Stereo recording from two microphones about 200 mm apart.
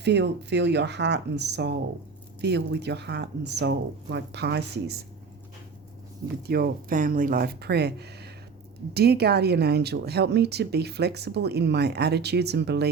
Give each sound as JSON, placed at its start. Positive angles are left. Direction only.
{"t": 0.0, "sound": "speech", "side_deg": -60}
{"t": 6.2, "sound": "speech", "side_deg": -50}